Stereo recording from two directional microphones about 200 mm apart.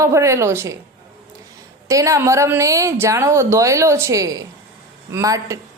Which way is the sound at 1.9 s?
15° right (ahead or behind).